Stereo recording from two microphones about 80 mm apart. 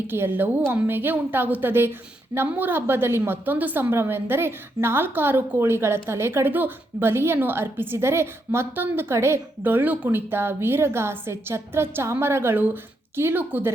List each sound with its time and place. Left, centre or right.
0.1 s a woman's voice: right